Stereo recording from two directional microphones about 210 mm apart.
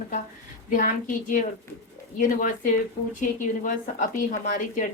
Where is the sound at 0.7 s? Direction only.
40° left (ahead or behind).